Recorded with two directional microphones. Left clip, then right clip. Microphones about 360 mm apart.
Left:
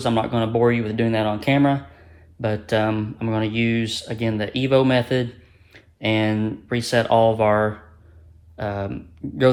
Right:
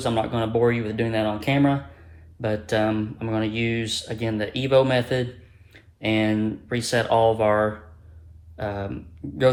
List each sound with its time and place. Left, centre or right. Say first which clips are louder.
0.0 s speech: left 2 dB; left